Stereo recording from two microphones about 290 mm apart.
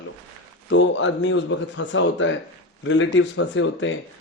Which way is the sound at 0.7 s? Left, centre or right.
Left.